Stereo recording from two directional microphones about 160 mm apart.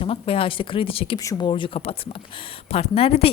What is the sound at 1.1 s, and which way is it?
A woman's voice, 25° left (ahead or behind).